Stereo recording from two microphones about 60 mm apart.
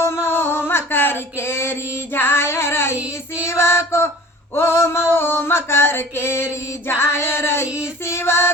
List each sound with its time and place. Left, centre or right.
0.0 s a sound: left
3.4 s music: left
4.5 s female singing: left